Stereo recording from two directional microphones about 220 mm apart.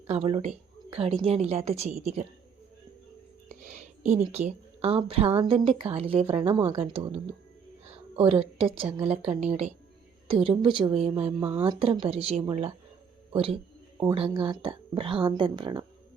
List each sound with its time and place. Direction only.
0.1 s a woman's voice: 30° right (ahead or behind)
3.5 s a woman's voice: 30° right (ahead or behind)
9.0 s speech: 5° right (ahead or behind)
9.4 s a woman's voice: 30° right (ahead or behind)